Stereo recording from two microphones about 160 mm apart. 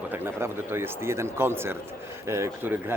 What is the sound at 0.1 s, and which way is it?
A man's voice, 15° right (ahead or behind).